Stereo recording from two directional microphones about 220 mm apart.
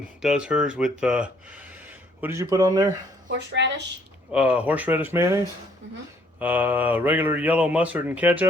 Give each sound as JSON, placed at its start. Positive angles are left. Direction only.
{"t": 0.2, "sound": "speech", "side_deg": -5}
{"t": 3.2, "sound": "speech", "side_deg": -55}
{"t": 4.3, "sound": "speech", "side_deg": -5}
{"t": 6.4, "sound": "speech", "side_deg": -10}